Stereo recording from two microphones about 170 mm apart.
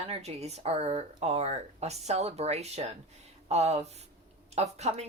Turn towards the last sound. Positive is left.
turn(degrees=-40)  # may be behind; listen again after turning